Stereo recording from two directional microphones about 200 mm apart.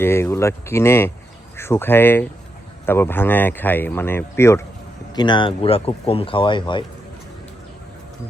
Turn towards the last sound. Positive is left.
turn(degrees=25)  # may be behind; listen again after turning